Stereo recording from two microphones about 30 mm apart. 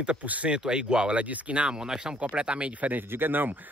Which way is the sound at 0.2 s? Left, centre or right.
Right.